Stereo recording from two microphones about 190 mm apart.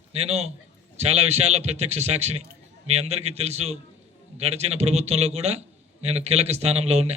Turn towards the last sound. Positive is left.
turn(degrees=-35)  # may be behind; listen again after turning